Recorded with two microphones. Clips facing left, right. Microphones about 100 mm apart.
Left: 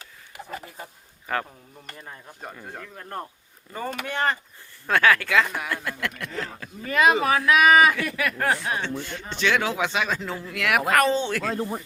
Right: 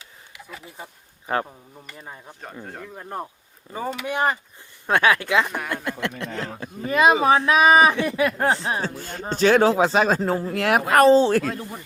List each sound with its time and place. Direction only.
0.3 s a sound: 45° left (ahead or behind)
1.3 s speech: 25° right (ahead or behind)
2.0 s speech: 10° right (ahead or behind); by 8.9 s 30° right (ahead or behind)
9.0 s speech: 40° right (ahead or behind)
11.4 s speech: 40° left (ahead or behind)